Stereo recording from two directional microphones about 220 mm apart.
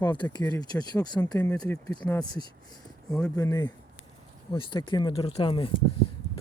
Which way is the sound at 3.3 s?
15° left (ahead or behind).